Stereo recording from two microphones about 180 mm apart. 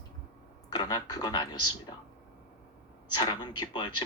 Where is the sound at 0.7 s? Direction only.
20° left (ahead or behind).